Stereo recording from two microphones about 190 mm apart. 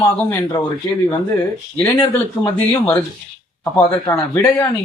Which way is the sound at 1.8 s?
15° left (ahead or behind).